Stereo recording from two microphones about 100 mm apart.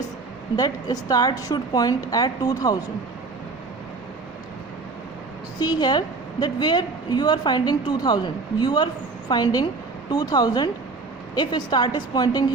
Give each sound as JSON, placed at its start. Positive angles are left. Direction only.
{"t": 0.5, "sound": "a woman's voice", "side_deg": 40}
{"t": 5.5, "sound": "a woman's voice", "side_deg": 45}